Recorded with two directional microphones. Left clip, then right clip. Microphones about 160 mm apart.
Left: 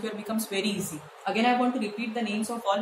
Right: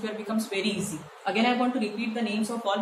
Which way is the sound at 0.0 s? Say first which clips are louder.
Right 1 dB; 25° left (ahead or behind).